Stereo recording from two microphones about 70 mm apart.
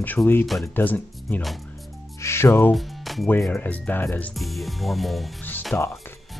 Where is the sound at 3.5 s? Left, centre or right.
Left.